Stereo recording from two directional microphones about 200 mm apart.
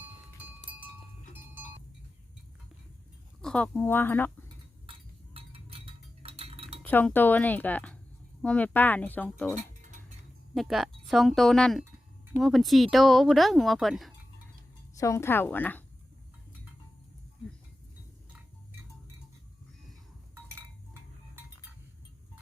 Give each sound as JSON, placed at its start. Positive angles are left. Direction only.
{"t": 3.4, "sound": "speech", "side_deg": 5}
{"t": 4.9, "sound": "chink", "side_deg": -30}
{"t": 6.8, "sound": "speech", "side_deg": 10}
{"t": 10.5, "sound": "speech", "side_deg": 0}
{"t": 14.9, "sound": "speech", "side_deg": 15}